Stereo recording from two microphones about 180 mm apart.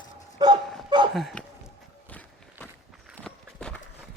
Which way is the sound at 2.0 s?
10° left (ahead or behind).